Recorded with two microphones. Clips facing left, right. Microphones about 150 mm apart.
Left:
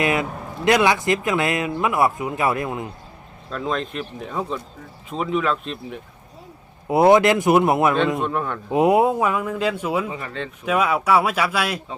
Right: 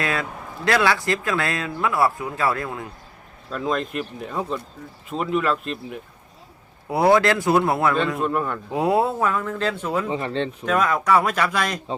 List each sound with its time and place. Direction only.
0.0 s a man's voice: 20° left (ahead or behind)
3.5 s speech: 5° right (ahead or behind)
6.8 s a man's voice: 20° left (ahead or behind)
8.2 s speech: centre (ahead or behind)
8.7 s speech: 20° left (ahead or behind)
10.1 s speech: 30° right (ahead or behind)
10.7 s speech: 10° left (ahead or behind)